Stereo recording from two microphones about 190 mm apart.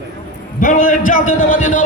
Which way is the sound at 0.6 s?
45° left (ahead or behind).